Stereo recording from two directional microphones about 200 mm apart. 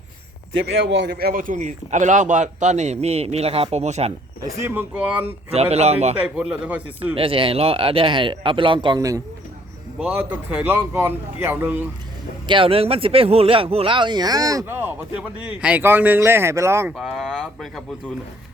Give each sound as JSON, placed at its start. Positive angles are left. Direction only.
{"t": 0.6, "sound": "a man's voice", "side_deg": -60}
{"t": 4.4, "sound": "a man's voice", "side_deg": -10}
{"t": 5.5, "sound": "a man's voice", "side_deg": -30}
{"t": 6.1, "sound": "a man's voice", "side_deg": -5}
{"t": 7.1, "sound": "a man's voice", "side_deg": -25}
{"t": 12.5, "sound": "speech", "side_deg": -25}
{"t": 17.0, "sound": "speech", "side_deg": 0}